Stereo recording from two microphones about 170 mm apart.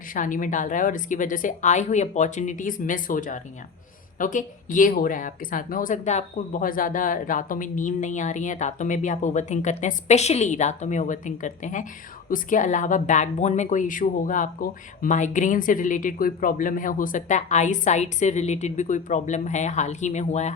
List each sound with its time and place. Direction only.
0.1 s speech: 50° left (ahead or behind)